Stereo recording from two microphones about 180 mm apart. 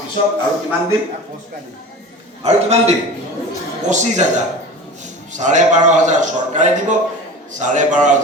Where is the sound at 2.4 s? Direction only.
35° right (ahead or behind).